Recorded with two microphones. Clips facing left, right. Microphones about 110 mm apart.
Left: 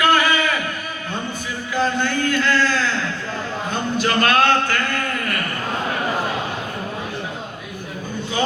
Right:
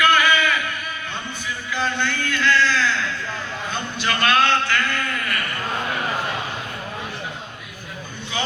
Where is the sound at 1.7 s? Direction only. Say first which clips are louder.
Left 4 dB; 40° left (ahead or behind).